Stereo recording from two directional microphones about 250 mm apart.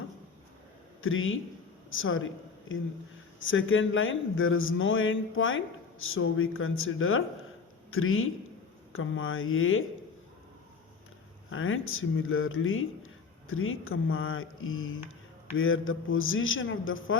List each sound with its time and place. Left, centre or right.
1.0 s speech: left
3.4 s a man's voice: left
11.5 s speech: left